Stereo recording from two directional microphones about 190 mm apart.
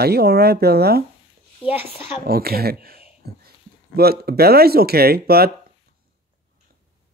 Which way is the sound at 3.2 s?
55° right (ahead or behind).